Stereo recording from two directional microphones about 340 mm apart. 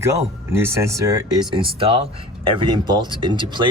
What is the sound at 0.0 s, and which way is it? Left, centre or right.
Speech, centre.